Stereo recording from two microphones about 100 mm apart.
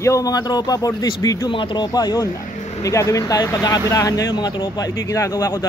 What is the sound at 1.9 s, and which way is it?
Speech, 40° left (ahead or behind).